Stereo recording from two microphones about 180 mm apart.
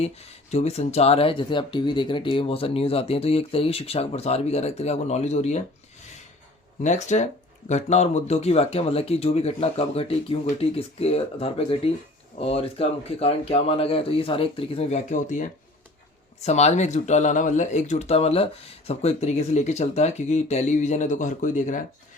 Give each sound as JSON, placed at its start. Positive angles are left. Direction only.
{"t": 0.0, "sound": "speech", "side_deg": 35}
{"t": 6.8, "sound": "speech", "side_deg": 40}